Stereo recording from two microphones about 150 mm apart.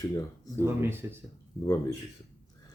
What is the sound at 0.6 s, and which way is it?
Speech, 15° right (ahead or behind).